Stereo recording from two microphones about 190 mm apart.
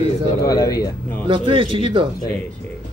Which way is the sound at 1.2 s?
25° right (ahead or behind).